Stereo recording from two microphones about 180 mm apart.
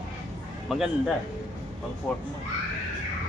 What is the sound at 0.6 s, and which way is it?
Speech, centre (ahead or behind).